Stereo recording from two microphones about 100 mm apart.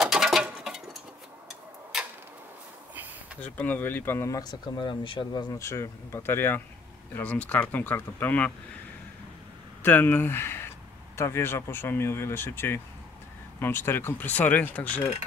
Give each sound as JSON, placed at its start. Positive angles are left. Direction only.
{"t": 0.0, "sound": "a sound", "side_deg": -5}
{"t": 3.3, "sound": "speech", "side_deg": 15}
{"t": 4.4, "sound": "speech", "side_deg": 45}
{"t": 5.6, "sound": "speech", "side_deg": 30}
{"t": 9.8, "sound": "speech", "side_deg": 20}